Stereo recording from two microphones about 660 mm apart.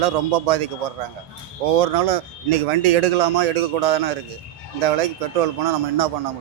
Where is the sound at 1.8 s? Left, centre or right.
Right.